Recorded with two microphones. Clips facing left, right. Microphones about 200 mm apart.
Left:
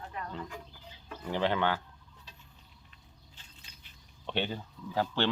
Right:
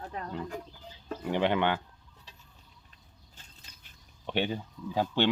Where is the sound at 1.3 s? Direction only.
15° right (ahead or behind).